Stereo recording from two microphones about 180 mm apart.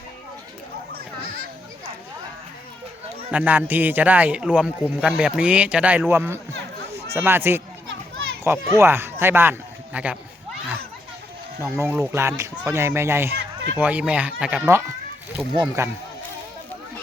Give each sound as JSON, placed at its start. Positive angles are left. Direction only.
{"t": 3.3, "sound": "a man's voice", "side_deg": -10}
{"t": 11.6, "sound": "a man's voice", "side_deg": -15}